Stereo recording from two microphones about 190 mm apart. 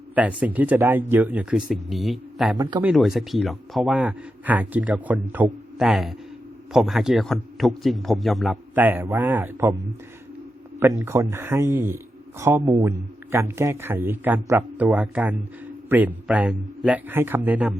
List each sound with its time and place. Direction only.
0.1 s speech: 5° right (ahead or behind)
2.6 s a man's voice: 20° right (ahead or behind)
2.8 s a man's voice: centre (ahead or behind)